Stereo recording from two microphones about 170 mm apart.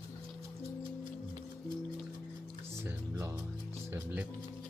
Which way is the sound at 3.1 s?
15° right (ahead or behind).